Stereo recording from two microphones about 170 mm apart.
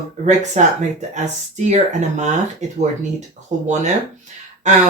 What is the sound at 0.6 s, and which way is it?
Speech, 45° right (ahead or behind).